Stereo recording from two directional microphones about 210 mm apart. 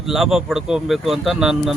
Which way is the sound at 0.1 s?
Centre (ahead or behind).